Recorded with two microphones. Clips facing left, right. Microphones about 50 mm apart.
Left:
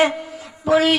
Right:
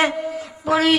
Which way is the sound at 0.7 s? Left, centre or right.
Centre.